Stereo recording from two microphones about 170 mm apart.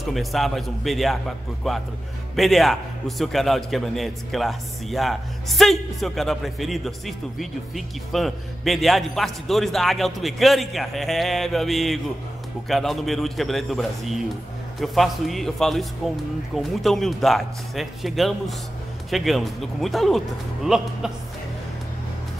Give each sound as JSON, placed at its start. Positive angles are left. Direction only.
{"t": 0.0, "sound": "a man's voice", "side_deg": 0}